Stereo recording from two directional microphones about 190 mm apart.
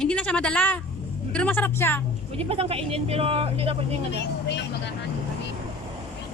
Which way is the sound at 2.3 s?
30° right (ahead or behind).